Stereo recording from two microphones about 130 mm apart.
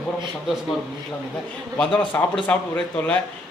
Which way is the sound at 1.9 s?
10° left (ahead or behind).